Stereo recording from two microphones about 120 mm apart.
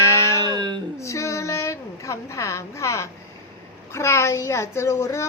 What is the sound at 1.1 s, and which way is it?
A woman's voice, 25° left (ahead or behind).